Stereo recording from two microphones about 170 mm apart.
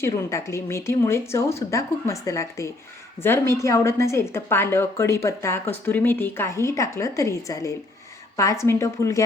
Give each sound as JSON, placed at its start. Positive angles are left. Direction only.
{"t": 0.0, "sound": "a woman's voice", "side_deg": 15}